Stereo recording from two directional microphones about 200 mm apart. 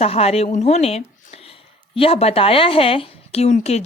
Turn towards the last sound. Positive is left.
turn(degrees=35)  # may be behind; listen again after turning